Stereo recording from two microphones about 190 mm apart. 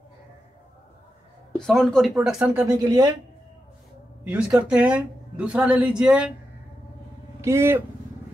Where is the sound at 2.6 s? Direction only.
20° right (ahead or behind).